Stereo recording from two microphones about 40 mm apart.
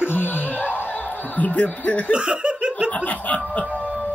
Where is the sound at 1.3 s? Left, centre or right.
Left.